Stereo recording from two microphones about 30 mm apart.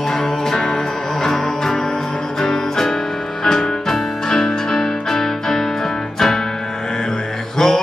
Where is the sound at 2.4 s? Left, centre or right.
Centre.